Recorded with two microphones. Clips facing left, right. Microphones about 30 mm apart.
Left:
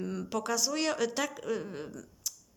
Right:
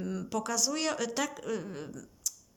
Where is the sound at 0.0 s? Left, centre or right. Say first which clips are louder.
Even; centre.